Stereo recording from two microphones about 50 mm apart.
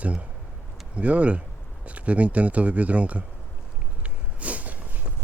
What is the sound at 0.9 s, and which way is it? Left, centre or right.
Speech, right.